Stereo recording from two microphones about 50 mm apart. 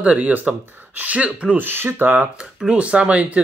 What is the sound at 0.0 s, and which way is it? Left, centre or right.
Speech, right.